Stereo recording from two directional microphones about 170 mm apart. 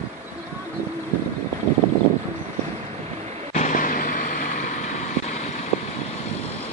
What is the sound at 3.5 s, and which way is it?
Vehicle, 50° left (ahead or behind).